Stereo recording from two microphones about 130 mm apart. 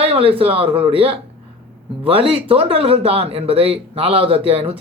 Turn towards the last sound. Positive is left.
turn(degrees=-45)  # may be behind; listen again after turning